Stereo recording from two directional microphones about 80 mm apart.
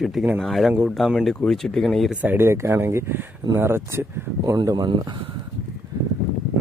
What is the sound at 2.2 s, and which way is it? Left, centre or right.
Speech, right.